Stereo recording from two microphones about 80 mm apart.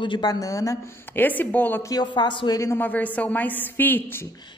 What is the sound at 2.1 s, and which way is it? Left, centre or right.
Speech, left.